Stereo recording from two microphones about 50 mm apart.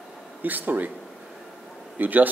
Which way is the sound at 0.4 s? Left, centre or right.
Right.